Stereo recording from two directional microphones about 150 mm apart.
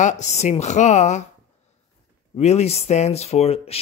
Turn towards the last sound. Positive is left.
turn(degrees=40)  # may be behind; listen again after turning